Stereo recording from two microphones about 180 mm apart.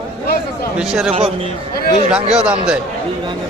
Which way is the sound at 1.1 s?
35° right (ahead or behind).